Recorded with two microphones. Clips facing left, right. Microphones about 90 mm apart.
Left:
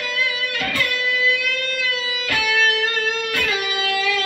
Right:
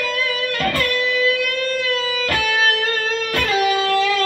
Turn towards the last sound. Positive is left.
turn(degrees=-40)  # may be behind; listen again after turning